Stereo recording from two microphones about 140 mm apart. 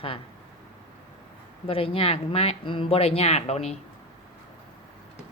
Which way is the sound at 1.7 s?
40° left (ahead or behind).